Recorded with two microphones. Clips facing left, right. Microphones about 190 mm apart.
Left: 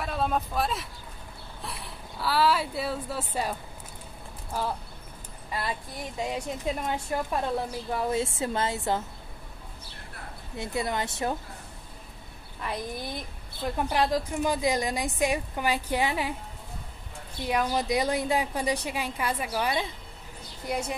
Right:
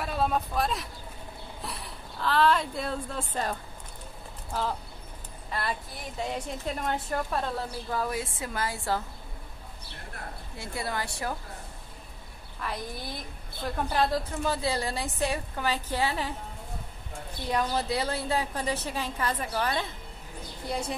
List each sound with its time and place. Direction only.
0.0 s speech: centre (ahead or behind)
5.5 s a woman's voice: 15° left (ahead or behind)
7.9 s a woman's voice: 25° left (ahead or behind)
10.6 s a woman's voice: 20° left (ahead or behind)
13.8 s a woman's voice: 15° left (ahead or behind)
17.5 s a woman's voice: 10° left (ahead or behind)